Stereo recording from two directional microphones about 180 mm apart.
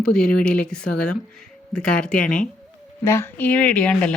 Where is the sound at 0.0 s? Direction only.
5° left (ahead or behind).